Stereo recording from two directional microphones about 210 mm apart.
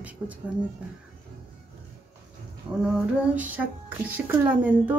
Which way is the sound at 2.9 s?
5° right (ahead or behind).